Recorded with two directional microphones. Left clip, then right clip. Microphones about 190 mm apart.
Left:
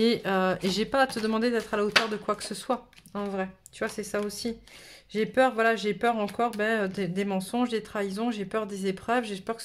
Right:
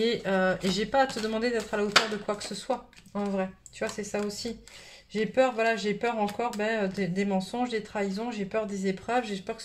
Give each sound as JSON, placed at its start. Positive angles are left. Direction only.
{"t": 0.0, "sound": "speech", "side_deg": 45}